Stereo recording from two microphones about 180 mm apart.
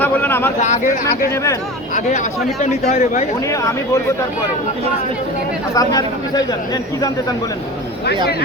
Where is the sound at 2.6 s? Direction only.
40° left (ahead or behind).